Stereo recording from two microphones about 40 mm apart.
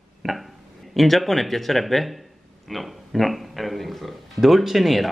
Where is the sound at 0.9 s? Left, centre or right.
Centre.